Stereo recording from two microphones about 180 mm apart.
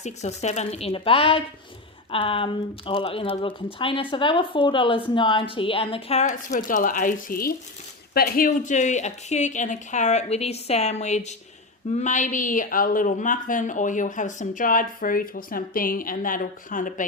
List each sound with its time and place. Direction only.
0.0 s speech: 40° left (ahead or behind)